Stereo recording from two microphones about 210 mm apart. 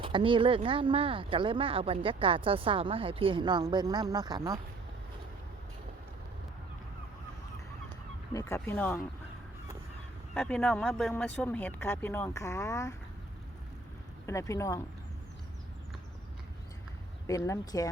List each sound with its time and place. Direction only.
0.0 s speech: 25° right (ahead or behind)
8.3 s speech: 15° left (ahead or behind)
10.3 s speech: 5° left (ahead or behind)
14.3 s speech: 15° left (ahead or behind)
17.2 s speech: 15° left (ahead or behind)